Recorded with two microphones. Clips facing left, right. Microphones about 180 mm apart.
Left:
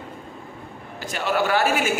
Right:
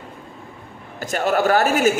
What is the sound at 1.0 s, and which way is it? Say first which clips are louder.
Speech: right 4 dB; 45° right (ahead or behind).